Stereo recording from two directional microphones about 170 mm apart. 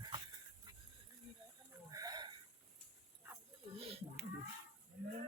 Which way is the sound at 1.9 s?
20° right (ahead or behind).